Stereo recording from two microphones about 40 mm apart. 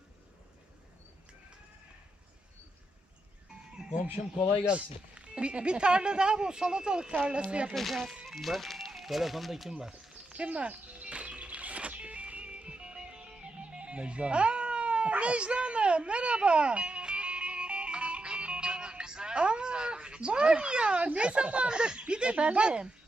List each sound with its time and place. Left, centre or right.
4.7 s speech: right
7.7 s speech: centre
8.2 s music: centre
8.9 s speech: centre
10.3 s music: right
15.1 s a sound: right